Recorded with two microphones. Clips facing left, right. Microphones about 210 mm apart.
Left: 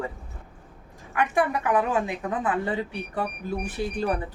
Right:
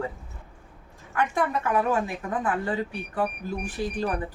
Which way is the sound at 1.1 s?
15° left (ahead or behind).